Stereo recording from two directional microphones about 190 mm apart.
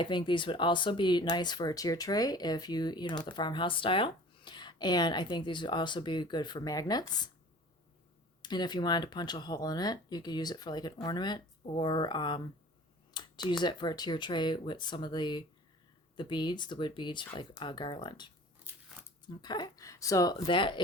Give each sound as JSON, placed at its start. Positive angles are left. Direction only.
{"t": 0.0, "sound": "speech", "side_deg": 25}
{"t": 8.4, "sound": "speech", "side_deg": 20}